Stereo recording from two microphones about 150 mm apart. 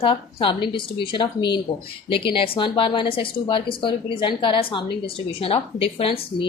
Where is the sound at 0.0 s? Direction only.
35° left (ahead or behind).